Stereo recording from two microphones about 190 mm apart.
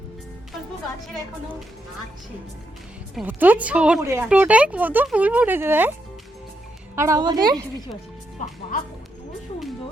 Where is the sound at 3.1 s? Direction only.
5° right (ahead or behind).